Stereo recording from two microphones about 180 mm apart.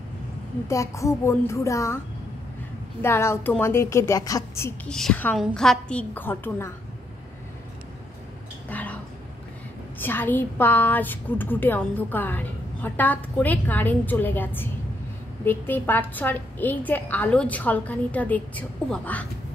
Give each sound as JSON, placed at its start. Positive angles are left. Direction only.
{"t": 0.7, "sound": "a woman's voice", "side_deg": 15}
{"t": 3.0, "sound": "a woman's voice", "side_deg": 15}
{"t": 8.6, "sound": "a sound", "side_deg": 10}
{"t": 9.9, "sound": "a woman's voice", "side_deg": 10}